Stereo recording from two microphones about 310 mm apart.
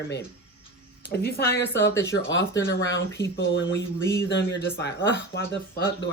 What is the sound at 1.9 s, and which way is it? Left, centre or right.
Speech, centre.